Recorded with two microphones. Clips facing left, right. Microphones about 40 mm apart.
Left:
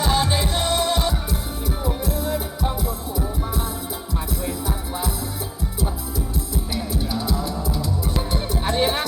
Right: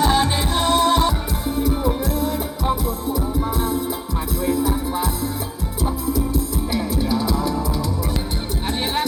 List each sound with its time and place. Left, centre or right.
0.0 s music: right
8.6 s music: centre